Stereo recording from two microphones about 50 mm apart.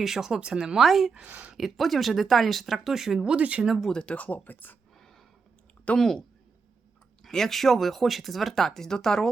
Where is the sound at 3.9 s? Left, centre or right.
Left.